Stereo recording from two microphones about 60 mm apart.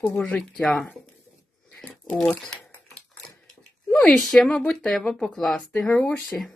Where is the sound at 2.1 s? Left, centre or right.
Centre.